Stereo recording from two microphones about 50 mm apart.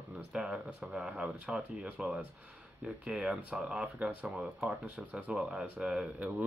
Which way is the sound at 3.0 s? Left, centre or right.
Right.